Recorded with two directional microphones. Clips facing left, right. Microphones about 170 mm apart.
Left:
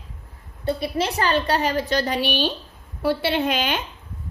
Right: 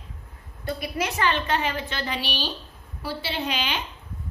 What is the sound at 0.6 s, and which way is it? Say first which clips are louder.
A woman's voice: left 5 dB; 30° left (ahead or behind).